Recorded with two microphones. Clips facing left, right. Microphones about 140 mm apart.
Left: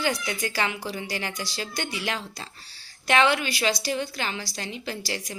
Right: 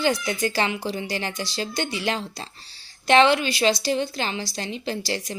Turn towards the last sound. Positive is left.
turn(degrees=-25)  # may be behind; listen again after turning